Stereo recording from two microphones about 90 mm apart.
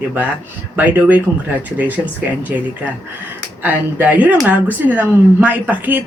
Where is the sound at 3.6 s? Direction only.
15° right (ahead or behind).